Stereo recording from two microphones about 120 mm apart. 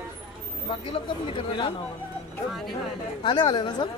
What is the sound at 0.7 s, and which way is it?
Speech, 45° left (ahead or behind).